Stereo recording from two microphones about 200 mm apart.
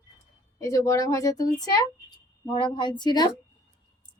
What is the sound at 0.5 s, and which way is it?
Speech, 15° left (ahead or behind).